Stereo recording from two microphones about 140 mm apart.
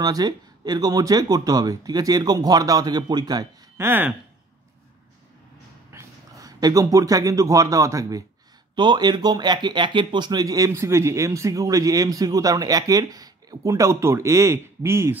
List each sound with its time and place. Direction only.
0.0 s speech: 30° right (ahead or behind)
3.7 s speech: 15° right (ahead or behind)
5.9 s speech: 20° right (ahead or behind)